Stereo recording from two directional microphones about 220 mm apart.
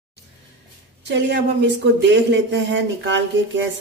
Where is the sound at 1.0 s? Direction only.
55° right (ahead or behind).